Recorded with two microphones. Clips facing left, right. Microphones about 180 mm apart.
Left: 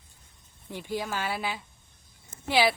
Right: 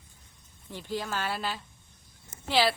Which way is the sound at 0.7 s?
15° left (ahead or behind).